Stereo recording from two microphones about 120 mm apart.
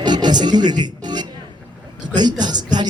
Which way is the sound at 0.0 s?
35° right (ahead or behind).